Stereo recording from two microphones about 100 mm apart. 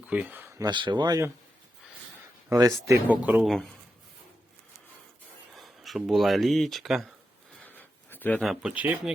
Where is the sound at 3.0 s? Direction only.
15° right (ahead or behind).